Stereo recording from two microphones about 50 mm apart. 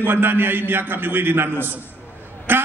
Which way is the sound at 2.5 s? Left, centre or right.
Right.